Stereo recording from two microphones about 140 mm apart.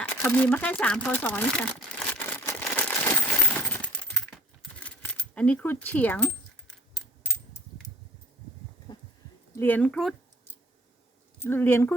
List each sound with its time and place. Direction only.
0.1 s speech: 15° left (ahead or behind)
2.1 s coin: 15° left (ahead or behind)
4.8 s a sound: 10° left (ahead or behind)
9.6 s speech: 15° left (ahead or behind)
11.3 s speech: 15° left (ahead or behind)